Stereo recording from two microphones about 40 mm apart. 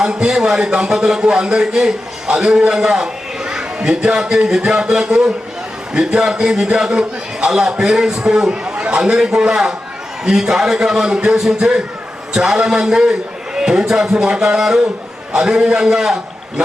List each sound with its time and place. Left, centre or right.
0.0 s a man's voice: right
8.7 s a sound: right
9.0 s a man's voice: centre